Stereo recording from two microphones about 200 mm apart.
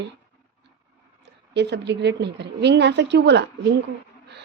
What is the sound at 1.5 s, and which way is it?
A woman's voice, 55° right (ahead or behind).